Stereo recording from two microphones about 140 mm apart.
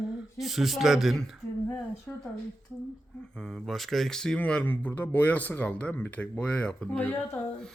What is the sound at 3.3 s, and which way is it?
Speech, 5° left (ahead or behind).